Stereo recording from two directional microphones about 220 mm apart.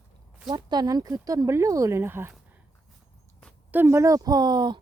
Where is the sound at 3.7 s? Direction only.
10° right (ahead or behind).